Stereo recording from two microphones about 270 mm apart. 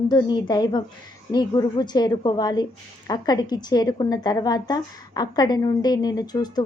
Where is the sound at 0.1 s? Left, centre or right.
Centre.